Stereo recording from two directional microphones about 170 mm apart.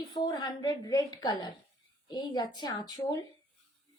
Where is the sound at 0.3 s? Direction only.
25° left (ahead or behind).